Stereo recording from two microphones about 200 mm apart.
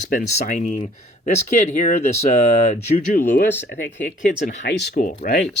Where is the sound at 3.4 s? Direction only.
55° left (ahead or behind).